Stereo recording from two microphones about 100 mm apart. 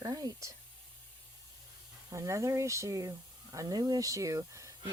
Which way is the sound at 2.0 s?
30° right (ahead or behind).